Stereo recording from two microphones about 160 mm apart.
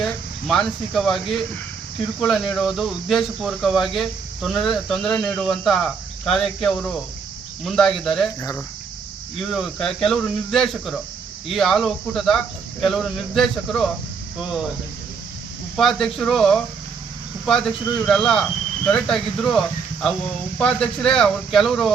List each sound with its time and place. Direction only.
0.0 s speech: centre (ahead or behind)
8.4 s cricket: 20° left (ahead or behind)
9.5 s speech: centre (ahead or behind)
15.7 s speech: centre (ahead or behind)